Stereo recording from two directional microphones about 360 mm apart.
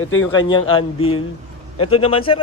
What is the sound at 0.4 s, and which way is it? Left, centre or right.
A man's voice, centre.